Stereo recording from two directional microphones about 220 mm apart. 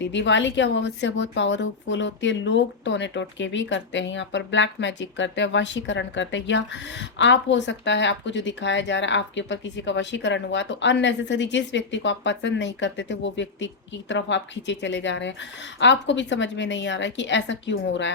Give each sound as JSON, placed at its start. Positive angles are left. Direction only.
{"t": 0.0, "sound": "a woman's voice", "side_deg": 55}